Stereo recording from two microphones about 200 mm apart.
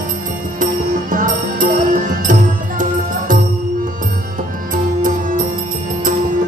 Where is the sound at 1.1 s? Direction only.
40° right (ahead or behind).